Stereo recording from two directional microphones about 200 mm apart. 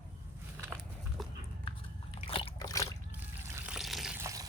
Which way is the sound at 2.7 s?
15° left (ahead or behind).